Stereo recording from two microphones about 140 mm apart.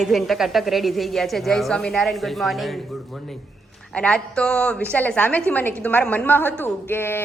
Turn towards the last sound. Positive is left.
turn(degrees=15)  # may be behind; listen again after turning